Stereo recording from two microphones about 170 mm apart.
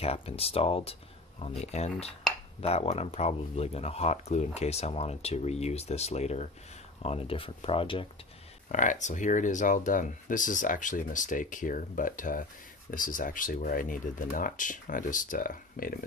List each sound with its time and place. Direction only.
0.0 s speech: 35° left (ahead or behind)
8.7 s speech: 45° left (ahead or behind)